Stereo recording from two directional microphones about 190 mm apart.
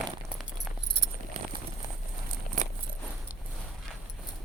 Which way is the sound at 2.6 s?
45° right (ahead or behind).